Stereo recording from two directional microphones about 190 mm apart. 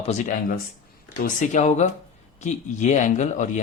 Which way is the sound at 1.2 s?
45° left (ahead or behind).